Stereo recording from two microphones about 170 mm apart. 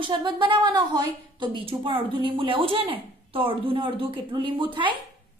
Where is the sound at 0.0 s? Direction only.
30° right (ahead or behind).